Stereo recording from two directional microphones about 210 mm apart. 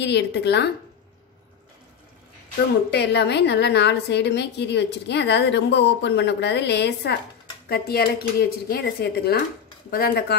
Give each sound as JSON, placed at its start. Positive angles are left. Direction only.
{"t": 0.0, "sound": "a woman's voice", "side_deg": 55}
{"t": 2.9, "sound": "a woman's voice", "side_deg": 55}